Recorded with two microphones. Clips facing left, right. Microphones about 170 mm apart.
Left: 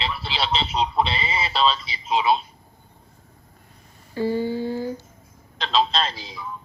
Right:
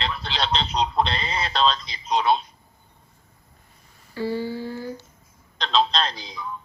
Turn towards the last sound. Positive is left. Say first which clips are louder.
# even
turn(degrees=5)  # may be behind; listen again after turning